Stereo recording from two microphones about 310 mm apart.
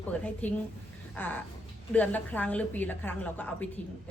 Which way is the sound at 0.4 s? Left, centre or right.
Centre.